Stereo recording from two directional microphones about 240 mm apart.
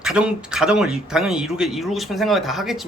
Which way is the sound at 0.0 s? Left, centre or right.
Centre.